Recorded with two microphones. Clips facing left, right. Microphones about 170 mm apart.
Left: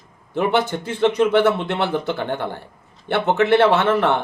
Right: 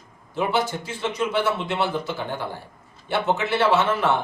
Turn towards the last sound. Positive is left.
turn(degrees=60)  # may be behind; listen again after turning